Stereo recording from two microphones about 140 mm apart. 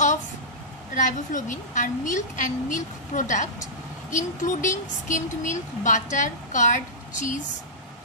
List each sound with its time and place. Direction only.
0.9 s a woman's voice: 65° left (ahead or behind)